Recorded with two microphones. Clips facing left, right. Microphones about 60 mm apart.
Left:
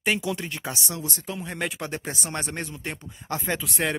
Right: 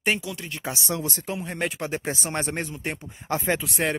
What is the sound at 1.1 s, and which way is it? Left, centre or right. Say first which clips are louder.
Speech: right 3 dB; right.